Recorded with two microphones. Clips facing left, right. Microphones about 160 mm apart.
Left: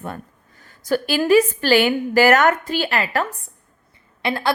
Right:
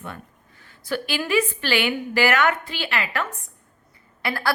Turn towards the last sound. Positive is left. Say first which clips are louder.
# left 4 dB
turn(degrees=20)  # may be behind; listen again after turning